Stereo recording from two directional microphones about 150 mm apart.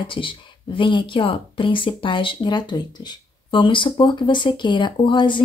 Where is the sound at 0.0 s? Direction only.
35° left (ahead or behind).